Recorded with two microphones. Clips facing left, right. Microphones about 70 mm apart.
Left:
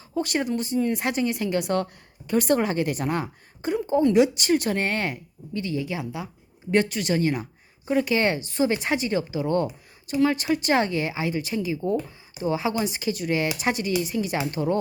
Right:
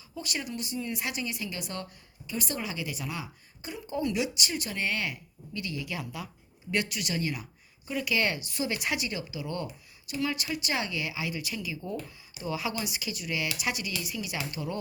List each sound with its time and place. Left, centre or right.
0.1 s speech: left
3.8 s speech: left
6.7 s speech: left